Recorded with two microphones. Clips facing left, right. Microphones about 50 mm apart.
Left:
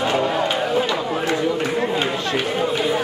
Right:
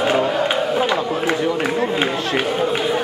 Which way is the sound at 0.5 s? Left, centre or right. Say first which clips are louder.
Right 1 dB; centre.